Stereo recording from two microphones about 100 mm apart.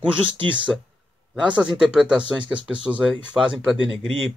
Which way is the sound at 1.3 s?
10° right (ahead or behind).